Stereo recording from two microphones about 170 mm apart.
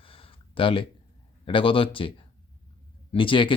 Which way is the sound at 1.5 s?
30° left (ahead or behind).